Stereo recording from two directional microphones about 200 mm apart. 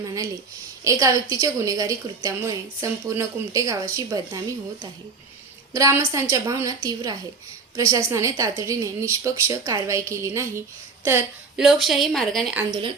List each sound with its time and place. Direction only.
0.0 s a woman's voice: 15° right (ahead or behind); by 12.5 s centre (ahead or behind)